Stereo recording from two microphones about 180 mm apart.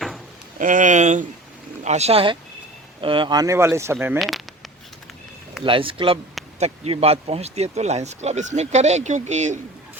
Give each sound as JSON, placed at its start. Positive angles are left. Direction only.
{"t": 0.6, "sound": "speech", "side_deg": -45}
{"t": 4.2, "sound": "a sound", "side_deg": 0}
{"t": 5.6, "sound": "speech", "side_deg": -30}